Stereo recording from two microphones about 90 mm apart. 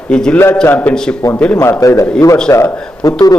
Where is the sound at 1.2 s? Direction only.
40° left (ahead or behind).